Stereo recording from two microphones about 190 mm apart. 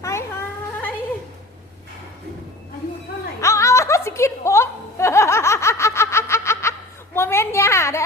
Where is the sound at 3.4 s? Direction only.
15° left (ahead or behind).